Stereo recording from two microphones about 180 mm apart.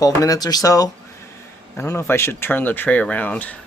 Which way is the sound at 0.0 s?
20° left (ahead or behind).